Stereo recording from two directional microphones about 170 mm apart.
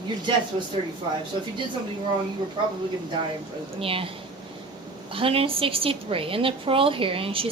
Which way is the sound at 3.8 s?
30° right (ahead or behind).